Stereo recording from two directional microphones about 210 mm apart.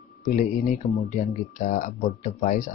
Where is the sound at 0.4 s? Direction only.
35° left (ahead or behind).